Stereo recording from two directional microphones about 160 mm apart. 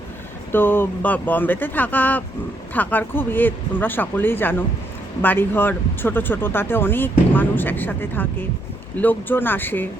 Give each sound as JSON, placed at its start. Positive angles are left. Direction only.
{"t": 0.5, "sound": "speech", "side_deg": 15}